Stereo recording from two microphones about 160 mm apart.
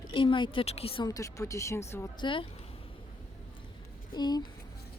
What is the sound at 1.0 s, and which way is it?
Speech, 20° left (ahead or behind).